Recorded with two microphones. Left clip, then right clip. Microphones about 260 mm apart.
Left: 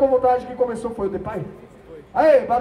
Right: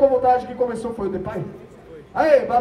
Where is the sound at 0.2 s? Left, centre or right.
Left.